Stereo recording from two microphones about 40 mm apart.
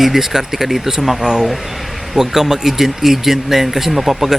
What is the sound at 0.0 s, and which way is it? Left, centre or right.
Speech, centre.